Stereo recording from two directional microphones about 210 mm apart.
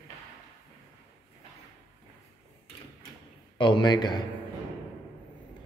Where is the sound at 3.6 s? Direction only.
20° left (ahead or behind).